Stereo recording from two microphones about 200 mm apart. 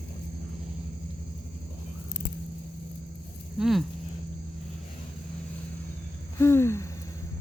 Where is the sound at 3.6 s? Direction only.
Centre (ahead or behind).